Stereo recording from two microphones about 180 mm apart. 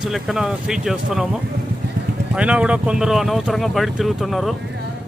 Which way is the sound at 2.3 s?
5° right (ahead or behind).